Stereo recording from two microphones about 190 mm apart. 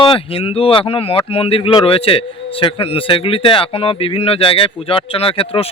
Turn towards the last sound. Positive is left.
turn(degrees=30)  # may be behind; listen again after turning